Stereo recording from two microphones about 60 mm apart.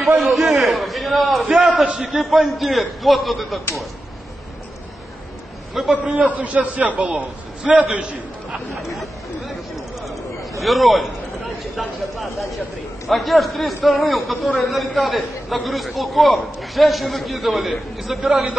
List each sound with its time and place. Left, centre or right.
0.0 s a man's voice: centre
1.5 s a sound: centre
1.8 s a man's voice: centre
2.0 s a man's voice: centre
5.9 s a man's voice: right
8.9 s speech: centre
10.6 s a man's voice: centre